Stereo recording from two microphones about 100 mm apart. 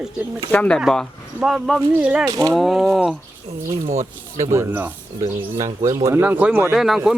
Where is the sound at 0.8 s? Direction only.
Centre (ahead or behind).